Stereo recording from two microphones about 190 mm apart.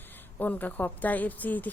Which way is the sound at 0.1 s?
10° left (ahead or behind).